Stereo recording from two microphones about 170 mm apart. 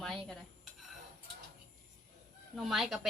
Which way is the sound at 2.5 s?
Centre (ahead or behind).